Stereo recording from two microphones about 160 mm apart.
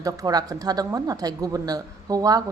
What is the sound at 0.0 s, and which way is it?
Speech, 25° right (ahead or behind).